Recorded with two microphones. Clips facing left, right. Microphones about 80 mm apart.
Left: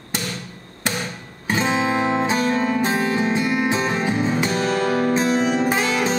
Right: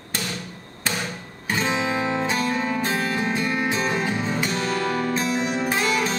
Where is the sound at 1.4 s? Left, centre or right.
Left.